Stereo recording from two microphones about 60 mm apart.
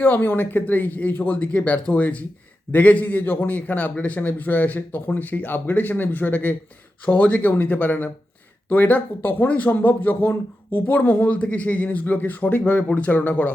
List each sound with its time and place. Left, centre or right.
0.0 s speech: left